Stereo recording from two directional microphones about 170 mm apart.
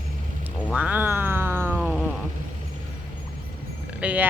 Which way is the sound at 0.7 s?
10° right (ahead or behind).